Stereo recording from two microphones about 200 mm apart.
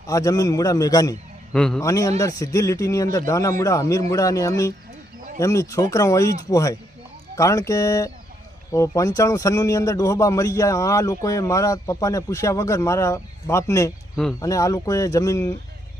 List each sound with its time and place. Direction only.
0.1 s a man's voice: 15° left (ahead or behind)
1.5 s a man's voice: 5° left (ahead or behind)
1.8 s a man's voice: 15° left (ahead or behind)